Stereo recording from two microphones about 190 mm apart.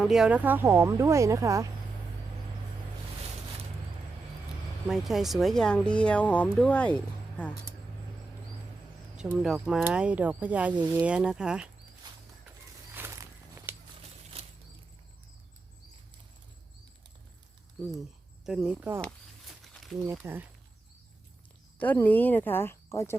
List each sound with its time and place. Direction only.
0.0 s speech: 5° right (ahead or behind)
4.9 s speech: centre (ahead or behind)
9.1 s speech: 5° right (ahead or behind)
12.0 s a sound: 25° right (ahead or behind)
17.8 s speech: centre (ahead or behind)
19.0 s a sound: 5° left (ahead or behind)
20.2 s speech: 10° right (ahead or behind)
21.8 s speech: 10° left (ahead or behind)